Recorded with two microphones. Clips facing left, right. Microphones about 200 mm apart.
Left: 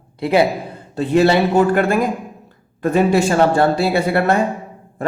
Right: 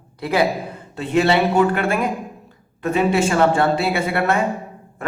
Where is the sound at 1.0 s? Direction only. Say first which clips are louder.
Left 3 dB; 40° left (ahead or behind).